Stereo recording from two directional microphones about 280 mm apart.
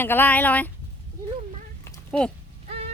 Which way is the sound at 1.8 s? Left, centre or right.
Centre.